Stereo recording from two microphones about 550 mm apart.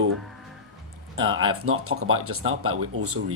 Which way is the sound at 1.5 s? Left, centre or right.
Right.